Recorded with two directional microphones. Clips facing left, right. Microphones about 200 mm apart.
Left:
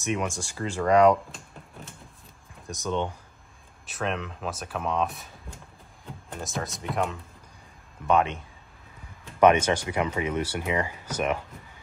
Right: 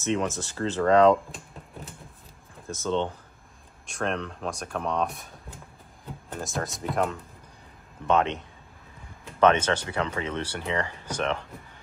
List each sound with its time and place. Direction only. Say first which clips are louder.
0.0 s speech: right 2 dB; 15° left (ahead or behind)
2.6 s speech: right 2 dB; 15° left (ahead or behind)
3.8 s speech: right 1 dB; 5° left (ahead or behind)
6.3 s speech: right 1 dB; centre (ahead or behind)
9.4 s speech: left 2 dB; 10° left (ahead or behind)